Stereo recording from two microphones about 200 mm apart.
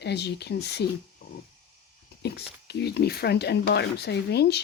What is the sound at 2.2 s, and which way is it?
Speech, 55° left (ahead or behind).